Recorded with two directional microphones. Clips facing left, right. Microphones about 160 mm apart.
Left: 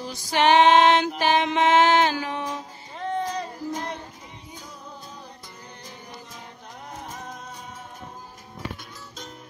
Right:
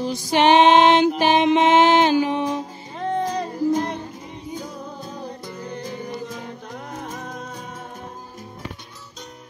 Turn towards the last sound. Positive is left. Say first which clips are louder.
# right 5 dB
turn(degrees=-90)